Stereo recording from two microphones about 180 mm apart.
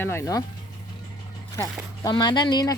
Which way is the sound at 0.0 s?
15° left (ahead or behind).